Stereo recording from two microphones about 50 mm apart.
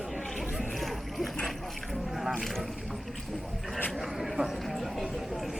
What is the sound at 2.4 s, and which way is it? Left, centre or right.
Speech, centre.